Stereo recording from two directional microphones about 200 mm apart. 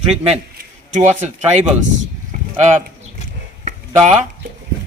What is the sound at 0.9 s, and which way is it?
Speech, 35° right (ahead or behind).